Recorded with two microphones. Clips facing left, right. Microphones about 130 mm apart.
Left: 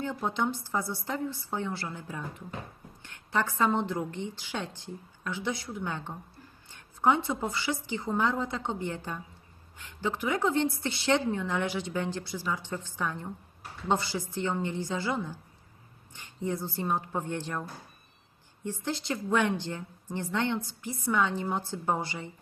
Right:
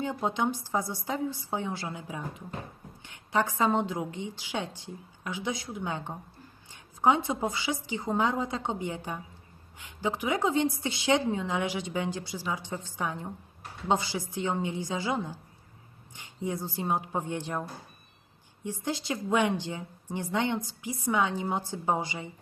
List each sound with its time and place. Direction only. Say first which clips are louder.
0.0 s a woman's voice: right 1 dB; 15° right (ahead or behind)